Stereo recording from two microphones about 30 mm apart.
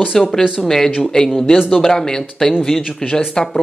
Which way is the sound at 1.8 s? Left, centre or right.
Centre.